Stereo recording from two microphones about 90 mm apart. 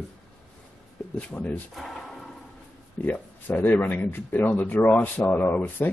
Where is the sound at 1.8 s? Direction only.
5° left (ahead or behind).